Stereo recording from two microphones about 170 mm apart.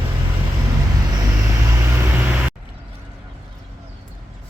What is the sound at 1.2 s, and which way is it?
Vehicle, 15° right (ahead or behind).